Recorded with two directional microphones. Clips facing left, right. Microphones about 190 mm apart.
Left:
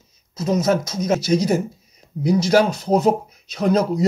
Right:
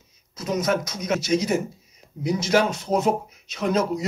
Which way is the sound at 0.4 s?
30° left (ahead or behind).